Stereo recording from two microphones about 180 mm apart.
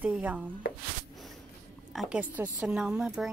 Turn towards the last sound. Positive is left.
turn(degrees=-5)  # may be behind; listen again after turning